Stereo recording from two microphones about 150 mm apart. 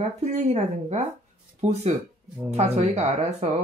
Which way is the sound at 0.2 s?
50° right (ahead or behind).